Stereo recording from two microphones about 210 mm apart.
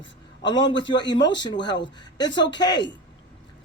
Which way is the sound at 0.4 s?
20° left (ahead or behind).